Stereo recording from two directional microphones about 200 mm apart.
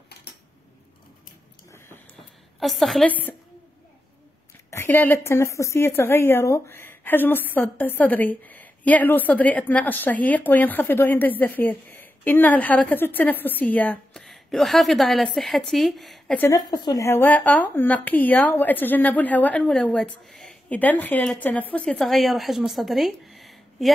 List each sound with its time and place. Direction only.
2.6 s a woman's voice: centre (ahead or behind)
4.6 s a woman's voice: 10° left (ahead or behind)